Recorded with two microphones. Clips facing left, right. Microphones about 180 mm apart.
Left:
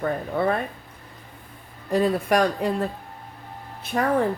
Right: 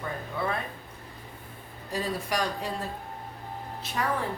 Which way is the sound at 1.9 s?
60° left (ahead or behind).